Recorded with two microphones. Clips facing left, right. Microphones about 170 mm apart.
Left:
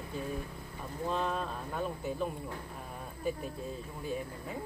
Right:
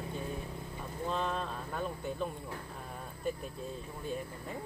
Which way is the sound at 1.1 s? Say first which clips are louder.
Left 1 dB; 5° left (ahead or behind).